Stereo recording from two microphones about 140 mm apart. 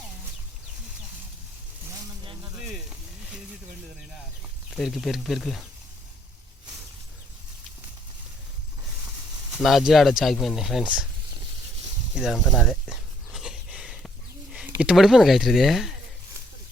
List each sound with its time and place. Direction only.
2.2 s snake: 35° right (ahead or behind)
4.7 s speech: centre (ahead or behind)
9.6 s speech: centre (ahead or behind)
12.1 s a sound: centre (ahead or behind)
14.5 s speech: 5° right (ahead or behind)